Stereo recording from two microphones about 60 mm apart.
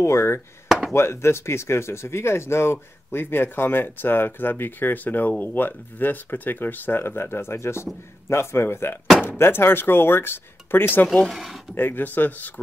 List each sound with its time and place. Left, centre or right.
0.0 s speech: left
0.7 s chop: centre
0.9 s speech: left
11.3 s speech: centre
11.7 s speech: left